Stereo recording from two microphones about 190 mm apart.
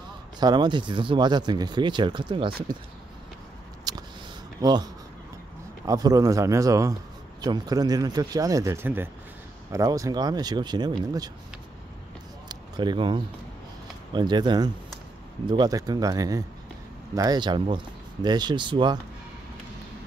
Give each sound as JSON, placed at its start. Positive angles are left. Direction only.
{"t": 0.4, "sound": "speech", "side_deg": -20}
{"t": 3.9, "sound": "a sound", "side_deg": -20}
{"t": 4.6, "sound": "speech", "side_deg": -20}
{"t": 5.9, "sound": "speech", "side_deg": -20}
{"t": 12.4, "sound": "a sound", "side_deg": -25}
{"t": 14.1, "sound": "speech", "side_deg": -25}